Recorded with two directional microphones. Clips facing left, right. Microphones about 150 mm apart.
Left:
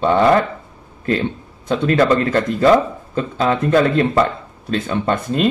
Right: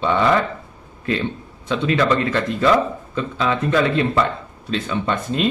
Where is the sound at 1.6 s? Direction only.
45° left (ahead or behind).